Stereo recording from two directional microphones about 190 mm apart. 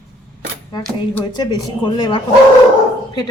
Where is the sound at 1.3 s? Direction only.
20° left (ahead or behind).